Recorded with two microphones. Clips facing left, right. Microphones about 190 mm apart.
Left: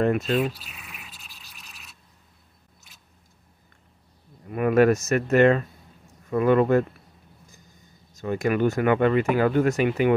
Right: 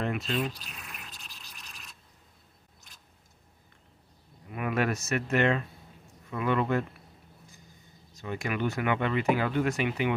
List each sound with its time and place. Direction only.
0.0 s speech: 45° left (ahead or behind)
0.5 s a sound: 5° left (ahead or behind)
4.5 s speech: 45° left (ahead or behind)
8.2 s speech: 45° left (ahead or behind)